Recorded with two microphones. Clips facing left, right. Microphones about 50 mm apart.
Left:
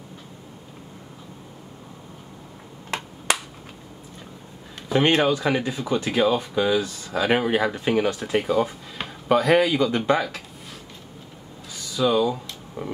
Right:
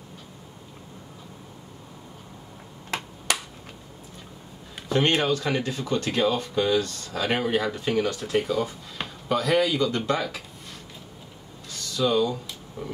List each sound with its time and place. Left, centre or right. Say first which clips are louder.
4.8 s speech: left 3 dB; centre
11.7 s a sound: left 2 dB; centre
12.8 s speech: left 3 dB; left